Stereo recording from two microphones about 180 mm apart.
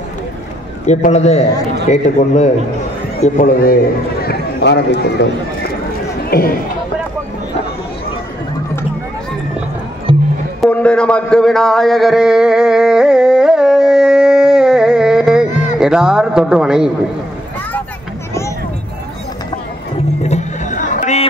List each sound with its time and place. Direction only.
0.8 s a man's voice: 40° left (ahead or behind); by 5.0 s 70° left (ahead or behind)
6.3 s a man's voice: 55° left (ahead or behind)
10.1 s music: 30° right (ahead or behind)
10.6 s a sound: 5° left (ahead or behind)
15.8 s a man's voice: 5° right (ahead or behind)
20.2 s a sound: 40° left (ahead or behind)